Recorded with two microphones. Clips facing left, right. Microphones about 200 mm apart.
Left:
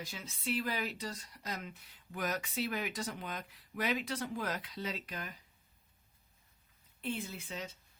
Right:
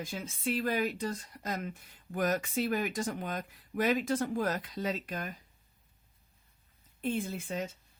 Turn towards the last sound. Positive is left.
turn(degrees=-50)  # may be behind; listen again after turning